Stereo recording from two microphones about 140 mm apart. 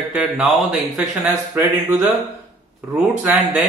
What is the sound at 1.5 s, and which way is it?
Speech, 20° right (ahead or behind).